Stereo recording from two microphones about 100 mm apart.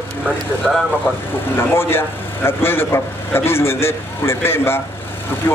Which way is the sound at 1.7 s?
25° left (ahead or behind).